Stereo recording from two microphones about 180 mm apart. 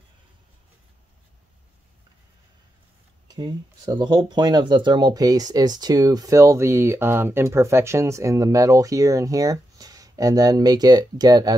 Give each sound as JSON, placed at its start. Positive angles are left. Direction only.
{"t": 3.3, "sound": "speech", "side_deg": -20}